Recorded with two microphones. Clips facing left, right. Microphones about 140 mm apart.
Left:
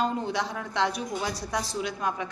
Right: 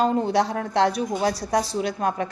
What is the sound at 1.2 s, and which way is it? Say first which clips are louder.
Speech: right 8 dB; 75° right (ahead or behind).